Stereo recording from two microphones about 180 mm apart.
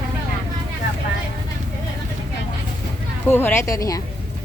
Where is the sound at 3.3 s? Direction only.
10° left (ahead or behind).